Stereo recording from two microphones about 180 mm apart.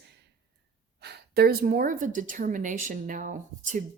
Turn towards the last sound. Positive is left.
turn(degrees=-45)  # may be behind; listen again after turning